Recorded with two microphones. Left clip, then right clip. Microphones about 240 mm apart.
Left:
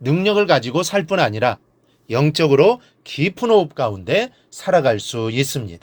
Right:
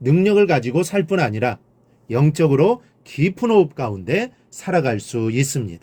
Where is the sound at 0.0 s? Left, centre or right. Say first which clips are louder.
Right 1 dB; centre.